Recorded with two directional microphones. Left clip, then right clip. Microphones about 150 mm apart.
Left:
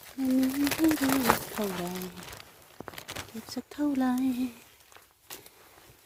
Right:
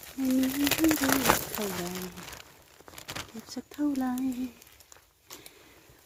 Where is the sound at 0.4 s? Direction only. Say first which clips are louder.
Right 1 dB; 30° right (ahead or behind).